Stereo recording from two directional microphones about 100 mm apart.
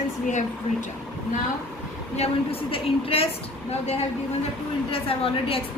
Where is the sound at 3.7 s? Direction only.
90° left.